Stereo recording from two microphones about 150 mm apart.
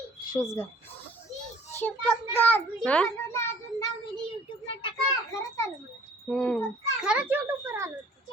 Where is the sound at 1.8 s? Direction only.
10° left (ahead or behind).